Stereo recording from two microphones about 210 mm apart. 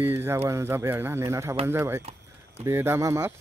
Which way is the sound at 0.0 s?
10° right (ahead or behind).